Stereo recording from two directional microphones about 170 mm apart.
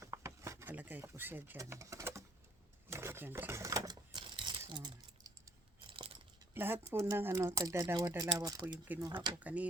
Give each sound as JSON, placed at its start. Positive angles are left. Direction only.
{"t": 0.0, "sound": "a sound", "side_deg": -15}
{"t": 6.5, "sound": "speech", "side_deg": -15}
{"t": 9.4, "sound": "speech", "side_deg": -10}